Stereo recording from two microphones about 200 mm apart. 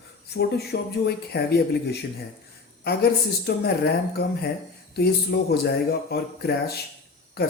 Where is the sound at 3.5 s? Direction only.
50° left (ahead or behind).